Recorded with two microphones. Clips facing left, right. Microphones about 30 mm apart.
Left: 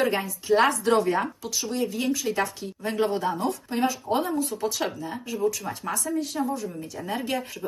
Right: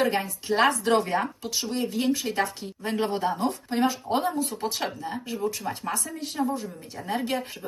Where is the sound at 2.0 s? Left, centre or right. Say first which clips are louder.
Even; right.